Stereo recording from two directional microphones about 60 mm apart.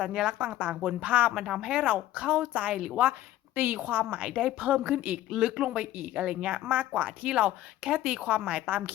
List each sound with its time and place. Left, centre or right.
0.0 s a woman's voice: centre
1.3 s a woman's voice: centre; by 4.0 s right
4.1 s speech: centre
5.3 s speech: centre